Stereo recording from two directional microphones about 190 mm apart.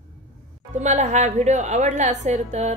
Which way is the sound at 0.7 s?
40° right (ahead or behind).